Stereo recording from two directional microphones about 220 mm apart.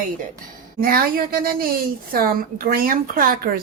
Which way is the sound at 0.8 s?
40° right (ahead or behind).